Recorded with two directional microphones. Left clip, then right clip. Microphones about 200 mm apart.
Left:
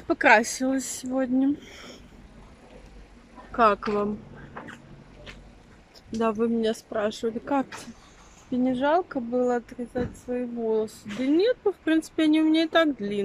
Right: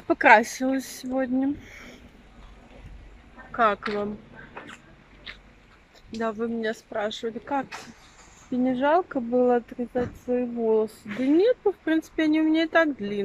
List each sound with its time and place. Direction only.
0.1 s speech: centre (ahead or behind)
3.5 s speech: 10° left (ahead or behind)
6.1 s speech: 10° left (ahead or behind)